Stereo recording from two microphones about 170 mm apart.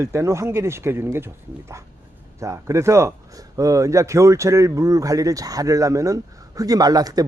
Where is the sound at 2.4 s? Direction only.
15° right (ahead or behind).